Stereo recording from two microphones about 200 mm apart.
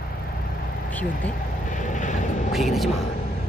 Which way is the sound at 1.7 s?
40° left (ahead or behind).